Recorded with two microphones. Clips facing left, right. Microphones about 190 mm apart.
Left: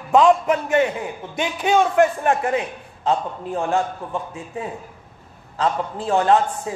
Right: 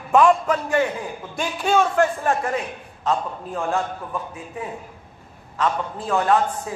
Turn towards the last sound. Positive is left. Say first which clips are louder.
# left 2 dB
turn(degrees=25)  # may be behind; listen again after turning